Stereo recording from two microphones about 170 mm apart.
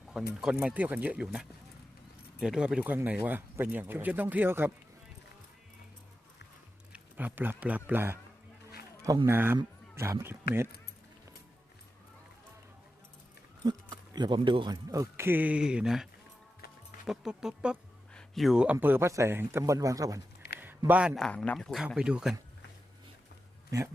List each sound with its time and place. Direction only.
0.4 s speech: 5° right (ahead or behind)
6.9 s a man's voice: 10° right (ahead or behind)
13.7 s speech: 25° right (ahead or behind); by 16.0 s 5° right (ahead or behind)
17.1 s a man's voice: 5° right (ahead or behind); by 20.2 s 20° right (ahead or behind)
20.6 s a sound: 10° right (ahead or behind)
21.2 s a man's voice: 5° left (ahead or behind)